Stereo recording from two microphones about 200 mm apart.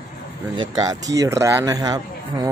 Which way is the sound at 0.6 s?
20° right (ahead or behind).